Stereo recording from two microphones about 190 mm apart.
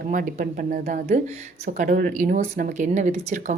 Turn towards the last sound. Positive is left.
turn(degrees=-40)  # may be behind; listen again after turning